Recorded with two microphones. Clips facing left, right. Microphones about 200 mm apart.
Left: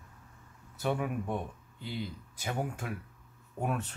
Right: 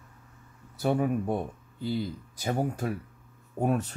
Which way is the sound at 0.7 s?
40° right (ahead or behind).